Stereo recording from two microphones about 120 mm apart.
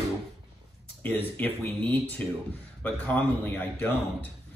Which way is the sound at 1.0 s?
15° left (ahead or behind).